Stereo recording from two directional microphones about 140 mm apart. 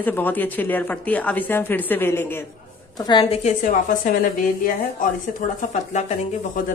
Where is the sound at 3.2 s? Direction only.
45° left (ahead or behind).